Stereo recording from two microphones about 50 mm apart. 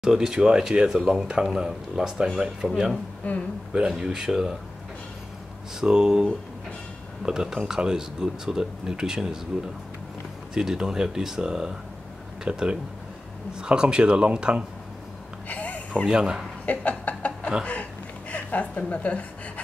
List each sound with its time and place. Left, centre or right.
0.0 s speech: centre
2.7 s speech: centre
3.2 s speech: left
3.7 s speech: centre
5.8 s speech: centre
10.5 s speech: centre
15.4 s a sound: left
16.1 s speech: centre
16.6 s a sound: left